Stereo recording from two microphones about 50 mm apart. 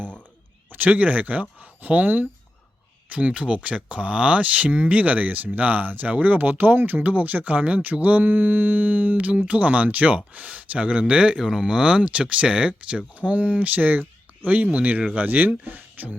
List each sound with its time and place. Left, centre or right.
0.7 s speech: right